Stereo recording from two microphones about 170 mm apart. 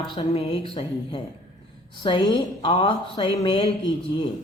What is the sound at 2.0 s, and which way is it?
Speech, 30° left (ahead or behind).